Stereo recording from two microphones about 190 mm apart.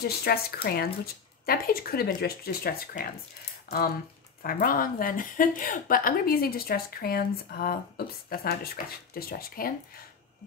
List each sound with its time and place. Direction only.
0.0 s a woman's voice: 55° left (ahead or behind)
4.4 s a woman's voice: 50° left (ahead or behind)